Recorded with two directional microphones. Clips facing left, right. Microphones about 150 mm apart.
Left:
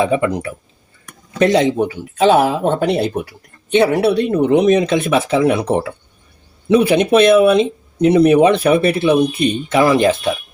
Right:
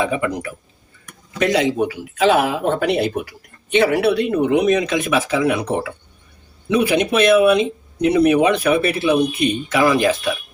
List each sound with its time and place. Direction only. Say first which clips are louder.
0.0 s speech: left 4 dB; 30° left (ahead or behind)